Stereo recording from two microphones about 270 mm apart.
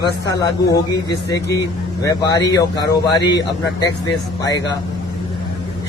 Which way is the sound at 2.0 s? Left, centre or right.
Centre.